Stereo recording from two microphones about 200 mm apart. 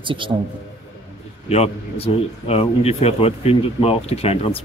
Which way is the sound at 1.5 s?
30° left (ahead or behind).